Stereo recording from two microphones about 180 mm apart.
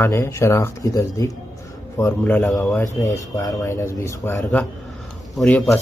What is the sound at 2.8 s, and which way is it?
Speech, 20° left (ahead or behind).